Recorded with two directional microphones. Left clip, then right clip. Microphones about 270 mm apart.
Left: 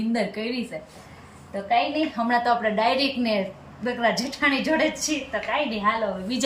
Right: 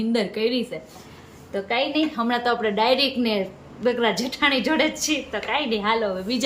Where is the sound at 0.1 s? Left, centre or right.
Centre.